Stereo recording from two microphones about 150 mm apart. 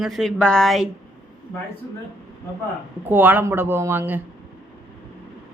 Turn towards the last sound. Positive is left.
turn(degrees=-15)  # may be behind; listen again after turning